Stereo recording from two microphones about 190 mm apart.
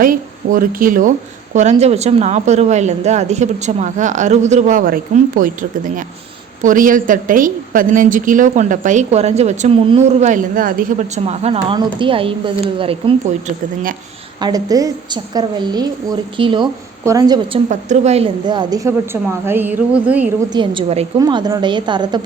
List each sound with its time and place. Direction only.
0.0 s speech: 45° right (ahead or behind)
1.5 s a woman's voice: 35° right (ahead or behind)
14.4 s a woman's voice: 20° right (ahead or behind)
17.7 s a woman's voice: 35° right (ahead or behind); by 20.3 s 10° right (ahead or behind)
20.5 s a woman's voice: 25° right (ahead or behind)